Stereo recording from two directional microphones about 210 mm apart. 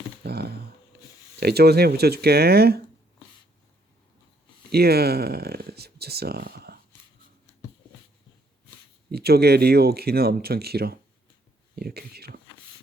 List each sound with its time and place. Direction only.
0.2 s a sound: 50° right (ahead or behind)
1.4 s speech: 50° right (ahead or behind)
4.7 s speech: 50° right (ahead or behind)
9.1 s speech: 50° right (ahead or behind)